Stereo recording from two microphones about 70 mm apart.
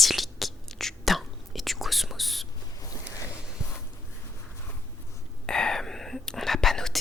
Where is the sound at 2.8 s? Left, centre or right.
Left.